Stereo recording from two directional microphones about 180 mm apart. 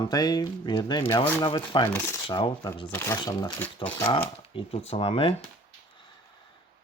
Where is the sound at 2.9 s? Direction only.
15° left (ahead or behind).